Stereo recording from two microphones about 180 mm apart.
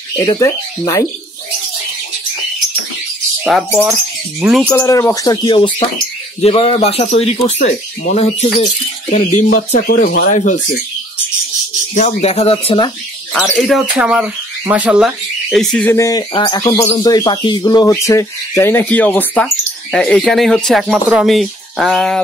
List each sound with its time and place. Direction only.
0.1 s speech: 20° left (ahead or behind)
3.4 s speech: centre (ahead or behind)
4.7 s speech: 15° left (ahead or behind); by 10.6 s 45° left (ahead or behind)
11.9 s speech: 40° left (ahead or behind)
13.3 s speech: centre (ahead or behind)